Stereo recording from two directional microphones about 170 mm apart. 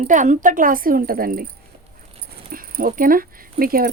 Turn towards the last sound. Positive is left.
turn(degrees=-60)  # may be behind; listen again after turning